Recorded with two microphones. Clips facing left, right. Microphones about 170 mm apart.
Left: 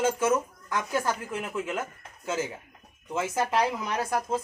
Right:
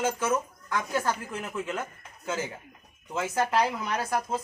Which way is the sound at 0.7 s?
15° left (ahead or behind).